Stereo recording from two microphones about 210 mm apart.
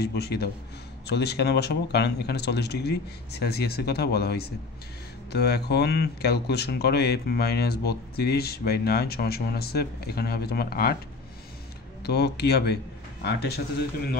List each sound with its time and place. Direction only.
0.0 s speech: 50° left (ahead or behind)
12.0 s speech: 50° left (ahead or behind)